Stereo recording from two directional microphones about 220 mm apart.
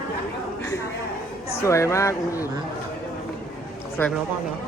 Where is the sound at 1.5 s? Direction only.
15° left (ahead or behind).